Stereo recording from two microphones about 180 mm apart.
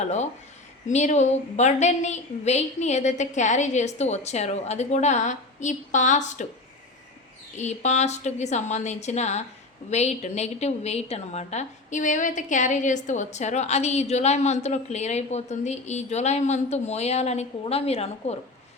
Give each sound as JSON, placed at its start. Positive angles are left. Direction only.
{"t": 0.0, "sound": "a woman's voice", "side_deg": 40}
{"t": 7.5, "sound": "a woman's voice", "side_deg": 40}